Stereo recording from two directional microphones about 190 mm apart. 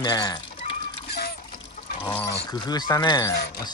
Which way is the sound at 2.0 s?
10° left (ahead or behind).